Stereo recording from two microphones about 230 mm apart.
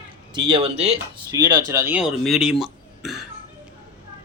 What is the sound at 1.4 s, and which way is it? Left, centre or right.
Speech, centre.